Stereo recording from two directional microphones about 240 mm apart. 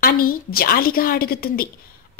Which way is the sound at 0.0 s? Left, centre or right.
Left.